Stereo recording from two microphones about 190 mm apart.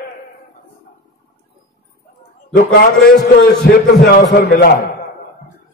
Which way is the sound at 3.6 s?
55° left (ahead or behind).